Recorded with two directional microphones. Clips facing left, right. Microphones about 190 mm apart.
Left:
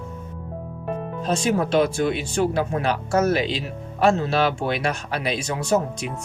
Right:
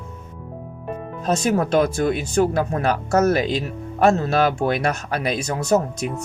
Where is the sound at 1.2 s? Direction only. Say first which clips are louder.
Right 2 dB; 40° right (ahead or behind).